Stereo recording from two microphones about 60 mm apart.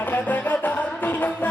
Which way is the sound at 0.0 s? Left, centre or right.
Left.